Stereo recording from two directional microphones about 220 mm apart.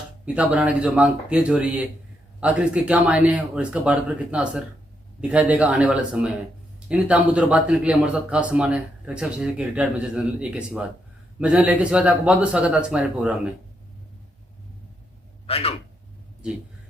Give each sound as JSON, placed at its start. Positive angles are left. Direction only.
{"t": 0.3, "sound": "a man's voice", "side_deg": -5}
{"t": 15.4, "sound": "speech", "side_deg": 25}